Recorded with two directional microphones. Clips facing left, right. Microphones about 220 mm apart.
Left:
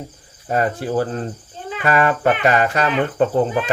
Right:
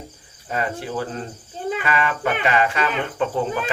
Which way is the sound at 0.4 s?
45° left (ahead or behind).